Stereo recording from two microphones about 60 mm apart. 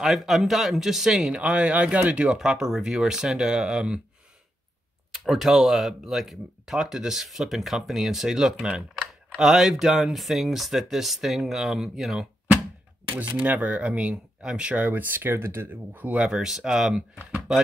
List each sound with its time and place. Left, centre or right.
0.0 s speech: centre
1.3 s speech: centre
5.1 s speech: centre
13.4 s speech: right
14.7 s speech: right
15.7 s speech: right
16.2 s speech: centre